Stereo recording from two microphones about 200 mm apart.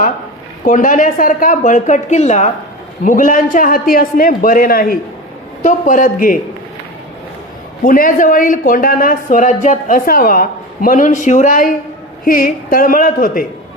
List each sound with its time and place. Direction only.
0.6 s a woman's voice: 40° left (ahead or behind)
7.9 s speech: 45° left (ahead or behind)